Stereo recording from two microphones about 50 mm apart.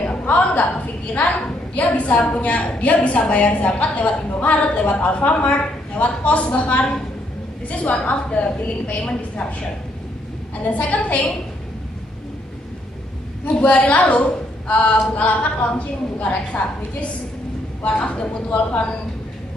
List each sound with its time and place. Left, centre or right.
0.3 s a woman's voice: left
1.8 s a woman's voice: left
10.6 s a woman's voice: left
13.6 s a woman's voice: left